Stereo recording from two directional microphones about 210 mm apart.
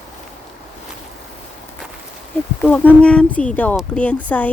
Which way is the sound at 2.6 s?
10° left (ahead or behind).